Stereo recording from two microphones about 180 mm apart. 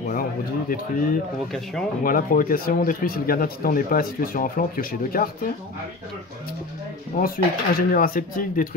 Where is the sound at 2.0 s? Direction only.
50° left (ahead or behind).